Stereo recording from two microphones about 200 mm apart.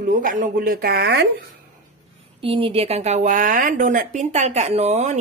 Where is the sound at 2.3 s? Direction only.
25° right (ahead or behind).